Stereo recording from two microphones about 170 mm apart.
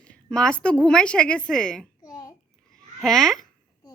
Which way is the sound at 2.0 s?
20° left (ahead or behind).